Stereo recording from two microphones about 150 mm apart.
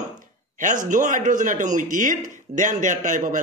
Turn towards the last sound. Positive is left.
turn(degrees=-60)  # may be behind; listen again after turning